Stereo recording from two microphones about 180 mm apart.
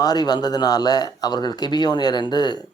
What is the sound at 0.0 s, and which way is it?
Speech, 20° left (ahead or behind).